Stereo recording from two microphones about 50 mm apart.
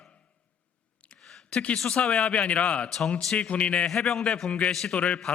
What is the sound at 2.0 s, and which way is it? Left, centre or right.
A man's voice, left.